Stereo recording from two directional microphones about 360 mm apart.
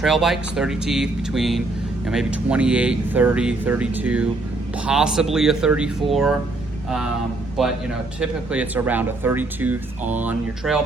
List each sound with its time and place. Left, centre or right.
0.0 s speech: centre
7.6 s speech: centre